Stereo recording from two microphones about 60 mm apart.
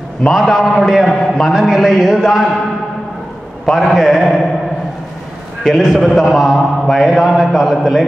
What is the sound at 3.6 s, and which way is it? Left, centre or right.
Speech, centre.